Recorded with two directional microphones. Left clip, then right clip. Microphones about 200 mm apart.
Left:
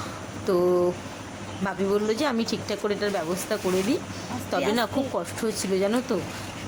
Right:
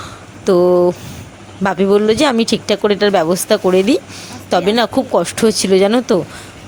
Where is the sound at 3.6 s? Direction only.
Centre (ahead or behind).